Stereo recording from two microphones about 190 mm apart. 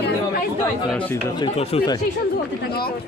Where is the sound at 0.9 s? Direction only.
10° left (ahead or behind).